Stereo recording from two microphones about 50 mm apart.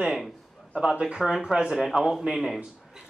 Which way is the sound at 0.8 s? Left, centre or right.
Centre.